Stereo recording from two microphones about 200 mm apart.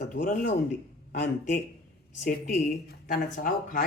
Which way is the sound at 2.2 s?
40° left (ahead or behind).